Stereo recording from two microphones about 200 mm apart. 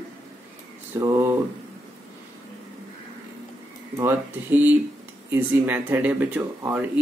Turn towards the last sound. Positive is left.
turn(degrees=-10)  # may be behind; listen again after turning